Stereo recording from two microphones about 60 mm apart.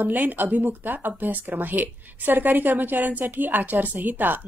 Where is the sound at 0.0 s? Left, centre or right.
Right.